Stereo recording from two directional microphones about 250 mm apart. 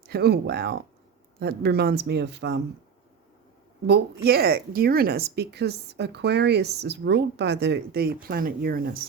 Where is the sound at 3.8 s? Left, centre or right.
Right.